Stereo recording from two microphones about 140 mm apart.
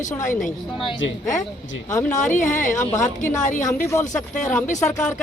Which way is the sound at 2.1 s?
65° left (ahead or behind).